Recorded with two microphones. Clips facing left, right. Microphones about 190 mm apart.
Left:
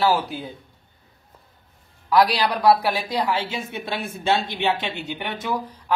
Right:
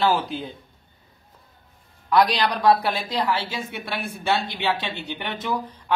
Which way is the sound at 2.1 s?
5° left (ahead or behind).